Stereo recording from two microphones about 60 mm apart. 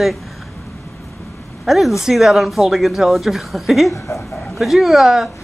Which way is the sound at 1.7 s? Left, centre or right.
Centre.